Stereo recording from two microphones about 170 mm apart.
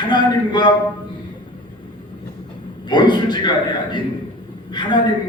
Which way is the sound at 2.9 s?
25° left (ahead or behind).